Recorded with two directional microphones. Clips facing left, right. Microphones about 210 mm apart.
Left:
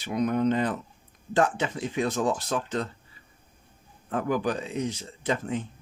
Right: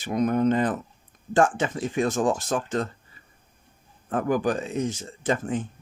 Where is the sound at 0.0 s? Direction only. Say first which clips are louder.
Right 3 dB; 45° right (ahead or behind).